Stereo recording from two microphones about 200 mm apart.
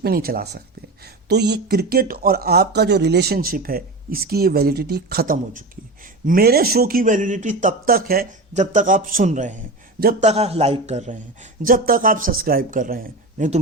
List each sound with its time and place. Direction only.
0.0 s a man's voice: 50° right (ahead or behind)
10.0 s speech: 50° right (ahead or behind)
10.2 s a man's voice: 30° right (ahead or behind)
11.6 s speech: 45° right (ahead or behind)